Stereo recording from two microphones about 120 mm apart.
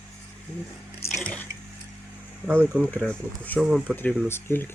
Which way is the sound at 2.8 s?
10° left (ahead or behind).